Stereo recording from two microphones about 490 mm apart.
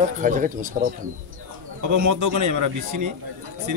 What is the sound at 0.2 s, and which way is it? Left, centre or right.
Speech, centre.